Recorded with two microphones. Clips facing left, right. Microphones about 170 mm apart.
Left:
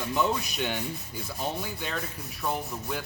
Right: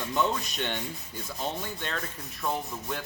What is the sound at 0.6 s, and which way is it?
Rub, 5° left (ahead or behind).